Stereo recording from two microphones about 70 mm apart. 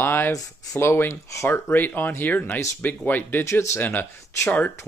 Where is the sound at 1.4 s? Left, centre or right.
Left.